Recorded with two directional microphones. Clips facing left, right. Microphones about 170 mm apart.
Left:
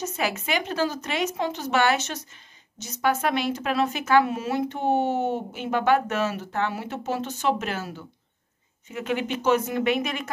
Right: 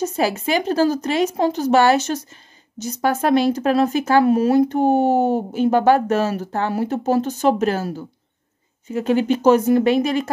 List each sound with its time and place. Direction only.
0.0 s a woman's voice: 35° right (ahead or behind)